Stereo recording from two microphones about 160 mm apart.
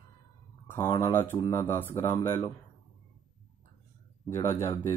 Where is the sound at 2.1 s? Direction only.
30° left (ahead or behind).